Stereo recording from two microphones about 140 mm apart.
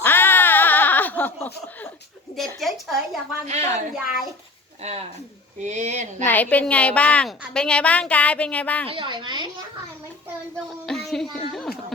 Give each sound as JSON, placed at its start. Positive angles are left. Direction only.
{"t": 0.0, "sound": "bleat", "side_deg": 15}
{"t": 2.6, "sound": "a sound", "side_deg": 0}
{"t": 3.4, "sound": "speech", "side_deg": -50}
{"t": 4.8, "sound": "speech", "side_deg": -50}
{"t": 6.2, "sound": "a woman's voice", "side_deg": 10}
{"t": 8.9, "sound": "a woman's voice", "side_deg": -35}
{"t": 10.8, "sound": "speech", "side_deg": 5}